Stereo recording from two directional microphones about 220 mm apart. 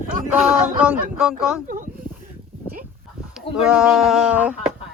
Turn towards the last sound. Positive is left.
turn(degrees=-5)  # may be behind; listen again after turning